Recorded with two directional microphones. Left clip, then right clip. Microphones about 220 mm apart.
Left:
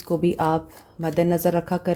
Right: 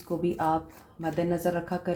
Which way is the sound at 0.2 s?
55° left (ahead or behind).